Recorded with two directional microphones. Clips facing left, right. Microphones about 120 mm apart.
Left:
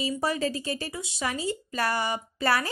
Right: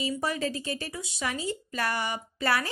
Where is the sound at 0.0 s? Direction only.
35° left (ahead or behind).